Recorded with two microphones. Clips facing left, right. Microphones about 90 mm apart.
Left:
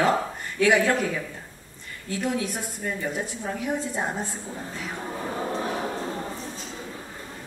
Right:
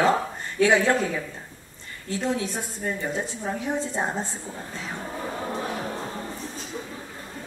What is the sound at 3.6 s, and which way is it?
Speech, 25° right (ahead or behind).